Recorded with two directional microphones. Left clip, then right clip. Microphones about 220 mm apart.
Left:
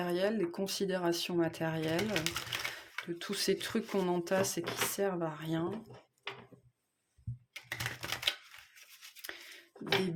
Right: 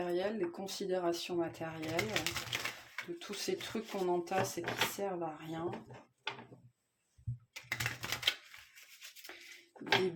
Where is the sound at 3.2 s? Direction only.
40° left (ahead or behind).